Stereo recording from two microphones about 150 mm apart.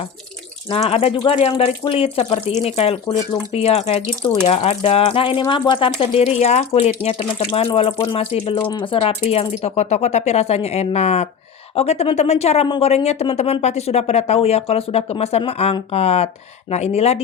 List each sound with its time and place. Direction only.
0.7 s speech: 40° left (ahead or behind)
12.6 s a woman's voice: 30° left (ahead or behind)
12.9 s speech: 45° left (ahead or behind)